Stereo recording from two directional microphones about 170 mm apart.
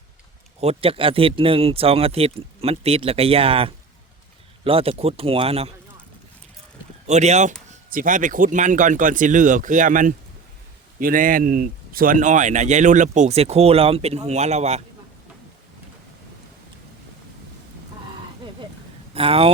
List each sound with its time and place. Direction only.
0.6 s speech: 35° right (ahead or behind)
7.1 s speech: 40° right (ahead or behind)
7.9 s speech: 55° right (ahead or behind)
19.1 s speech: 35° right (ahead or behind)